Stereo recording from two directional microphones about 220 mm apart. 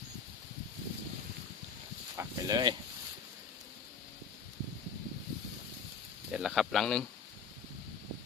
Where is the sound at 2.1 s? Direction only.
20° right (ahead or behind).